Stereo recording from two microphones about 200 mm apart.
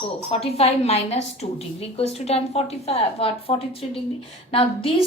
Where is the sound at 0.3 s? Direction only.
30° left (ahead or behind).